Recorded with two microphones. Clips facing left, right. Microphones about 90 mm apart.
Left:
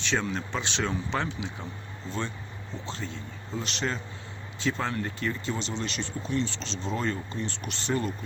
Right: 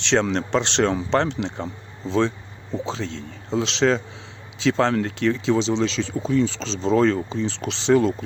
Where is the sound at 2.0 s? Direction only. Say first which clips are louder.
Right 12 dB; 90° right.